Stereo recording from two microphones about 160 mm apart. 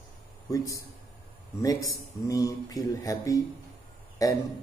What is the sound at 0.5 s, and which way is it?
Speech, 20° left (ahead or behind).